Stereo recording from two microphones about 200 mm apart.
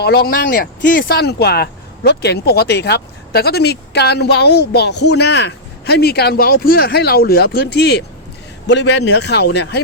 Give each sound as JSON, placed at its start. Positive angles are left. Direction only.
{"t": 0.0, "sound": "a man's voice", "side_deg": 50}